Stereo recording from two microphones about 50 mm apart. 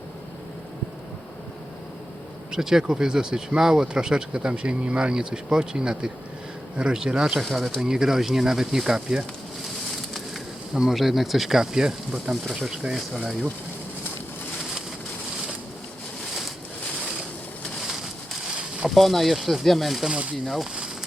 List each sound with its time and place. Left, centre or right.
2.5 s speech: centre
10.8 s speech: centre
18.9 s speech: centre
20.1 s speech: right